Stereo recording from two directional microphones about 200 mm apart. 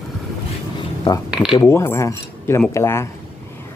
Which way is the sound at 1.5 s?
15° left (ahead or behind).